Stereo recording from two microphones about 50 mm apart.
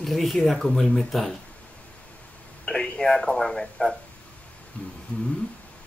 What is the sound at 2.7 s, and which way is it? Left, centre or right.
Speech, centre.